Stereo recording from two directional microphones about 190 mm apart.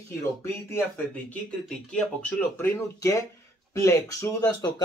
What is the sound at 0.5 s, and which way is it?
Speech, 10° left (ahead or behind).